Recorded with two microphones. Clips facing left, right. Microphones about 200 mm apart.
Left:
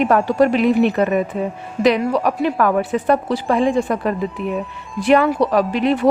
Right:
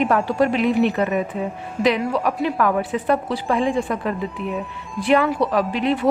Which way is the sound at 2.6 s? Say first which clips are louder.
Left 3 dB; 45° left (ahead or behind).